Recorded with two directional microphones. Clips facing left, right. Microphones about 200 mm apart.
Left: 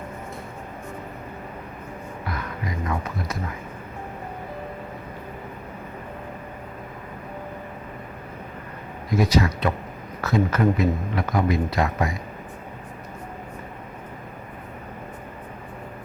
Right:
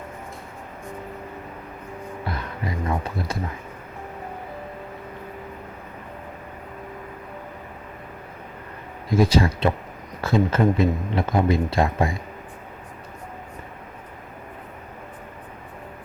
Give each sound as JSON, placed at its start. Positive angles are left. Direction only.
{"t": 2.2, "sound": "music", "side_deg": -30}
{"t": 9.0, "sound": "speech", "side_deg": -30}